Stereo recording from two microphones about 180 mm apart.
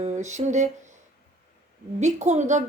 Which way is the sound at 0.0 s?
40° right (ahead or behind).